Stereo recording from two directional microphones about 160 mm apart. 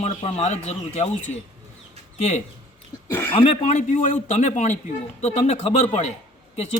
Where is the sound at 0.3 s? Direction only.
45° left (ahead or behind).